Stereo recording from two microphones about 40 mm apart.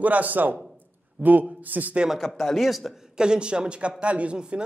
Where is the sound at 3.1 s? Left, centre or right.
Right.